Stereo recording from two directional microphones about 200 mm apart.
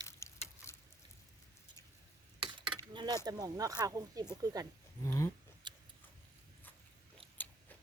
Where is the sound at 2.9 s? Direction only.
20° right (ahead or behind).